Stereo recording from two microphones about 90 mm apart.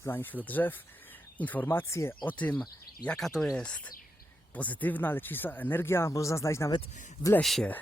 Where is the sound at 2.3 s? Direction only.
15° left (ahead or behind).